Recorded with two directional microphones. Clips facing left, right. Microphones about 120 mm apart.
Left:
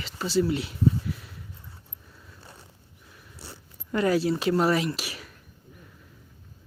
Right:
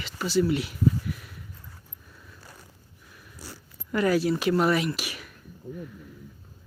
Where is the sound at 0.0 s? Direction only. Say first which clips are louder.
Even; 30° left (ahead or behind).